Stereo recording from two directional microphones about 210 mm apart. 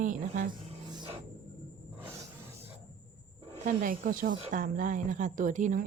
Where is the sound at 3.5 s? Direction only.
40° right (ahead or behind).